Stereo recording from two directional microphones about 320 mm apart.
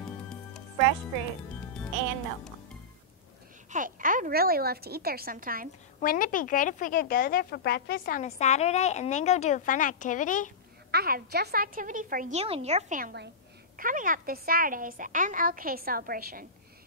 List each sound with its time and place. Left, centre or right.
3.7 s a woman's voice: right
5.9 s a woman's voice: left
10.9 s a woman's voice: right